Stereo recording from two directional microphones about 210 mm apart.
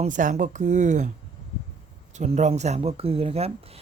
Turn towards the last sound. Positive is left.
turn(degrees=-30)  # may be behind; listen again after turning